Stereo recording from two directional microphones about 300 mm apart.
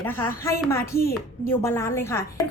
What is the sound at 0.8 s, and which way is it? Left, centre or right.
Speech, left.